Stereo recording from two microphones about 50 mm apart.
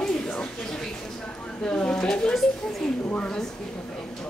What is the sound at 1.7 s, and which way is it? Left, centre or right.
Speech, centre.